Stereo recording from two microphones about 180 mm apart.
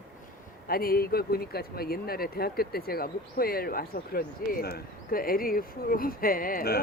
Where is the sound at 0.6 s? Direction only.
55° left (ahead or behind).